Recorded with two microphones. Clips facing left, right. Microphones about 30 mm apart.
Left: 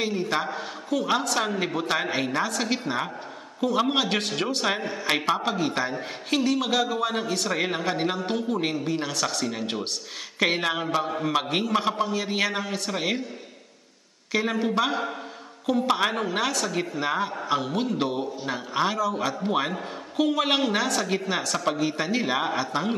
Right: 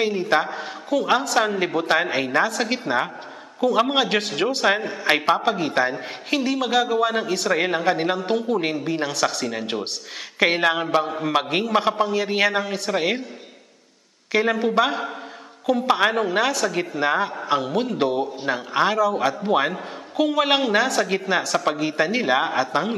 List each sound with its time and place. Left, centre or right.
0.0 s a man's voice: centre
14.3 s a man's voice: centre
18.4 s speech: right
18.9 s a man's voice: centre